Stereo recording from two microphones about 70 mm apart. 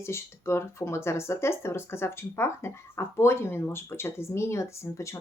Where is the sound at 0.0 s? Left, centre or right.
Left.